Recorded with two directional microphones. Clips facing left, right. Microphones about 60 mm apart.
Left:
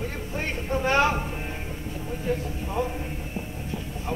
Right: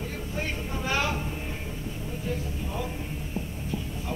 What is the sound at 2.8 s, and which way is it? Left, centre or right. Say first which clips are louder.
Speech: left 8 dB; left.